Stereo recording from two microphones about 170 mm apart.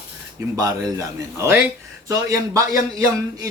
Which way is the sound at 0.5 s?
20° right (ahead or behind).